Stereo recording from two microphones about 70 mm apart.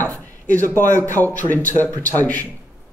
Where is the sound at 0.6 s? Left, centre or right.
Left.